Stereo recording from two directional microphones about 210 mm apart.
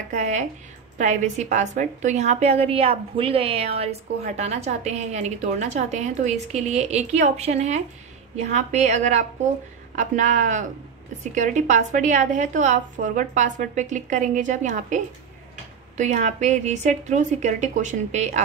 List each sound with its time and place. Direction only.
0.1 s a woman's voice: 35° right (ahead or behind)
16.0 s a woman's voice: 35° right (ahead or behind)